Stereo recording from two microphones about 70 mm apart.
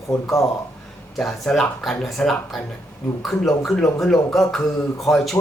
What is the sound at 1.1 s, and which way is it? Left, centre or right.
Speech, centre.